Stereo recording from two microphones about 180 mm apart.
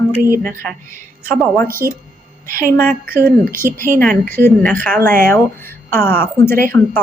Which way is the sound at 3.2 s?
50° right (ahead or behind).